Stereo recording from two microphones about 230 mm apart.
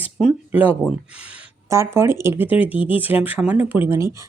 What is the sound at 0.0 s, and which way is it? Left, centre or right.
Speech, centre.